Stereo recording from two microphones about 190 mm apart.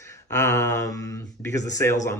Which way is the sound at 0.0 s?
15° left (ahead or behind).